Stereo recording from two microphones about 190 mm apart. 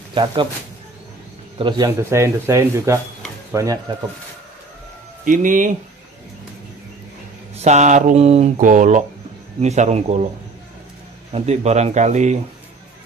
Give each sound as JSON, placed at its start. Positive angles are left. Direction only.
{"t": 0.1, "sound": "a man's voice", "side_deg": -25}
{"t": 1.6, "sound": "a man's voice", "side_deg": -25}
{"t": 5.2, "sound": "speech", "side_deg": -45}
{"t": 7.5, "sound": "speech", "side_deg": -35}
{"t": 11.3, "sound": "speech", "side_deg": -35}